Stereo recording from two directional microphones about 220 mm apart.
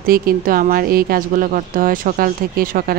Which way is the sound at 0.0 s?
40° right (ahead or behind).